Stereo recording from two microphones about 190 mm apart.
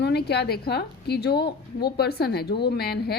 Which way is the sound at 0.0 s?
60° left (ahead or behind).